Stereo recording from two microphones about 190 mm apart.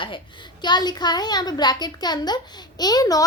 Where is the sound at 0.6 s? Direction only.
20° left (ahead or behind).